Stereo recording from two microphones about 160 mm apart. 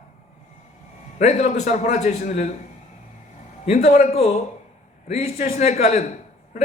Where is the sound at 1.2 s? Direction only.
45° left (ahead or behind).